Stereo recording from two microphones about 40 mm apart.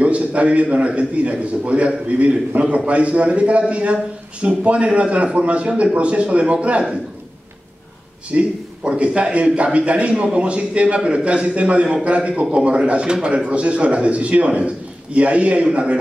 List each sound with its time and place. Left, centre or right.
0.0 s a man's voice: right
8.4 s a man's voice: right
11.0 s a man's voice: centre
11.2 s a man's voice: right